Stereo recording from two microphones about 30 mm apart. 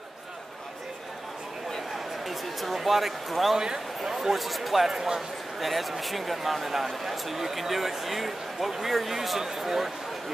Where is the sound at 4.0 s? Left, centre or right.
Centre.